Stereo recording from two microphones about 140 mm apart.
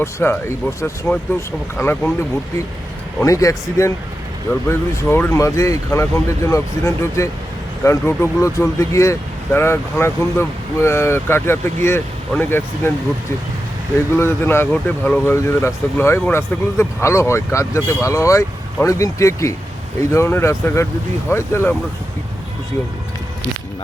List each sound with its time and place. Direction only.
0.0 s speech: 15° left (ahead or behind)
3.2 s speech: 25° left (ahead or behind)
14.2 s speech: 15° left (ahead or behind)